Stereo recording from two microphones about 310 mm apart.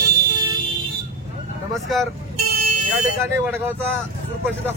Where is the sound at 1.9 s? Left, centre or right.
Centre.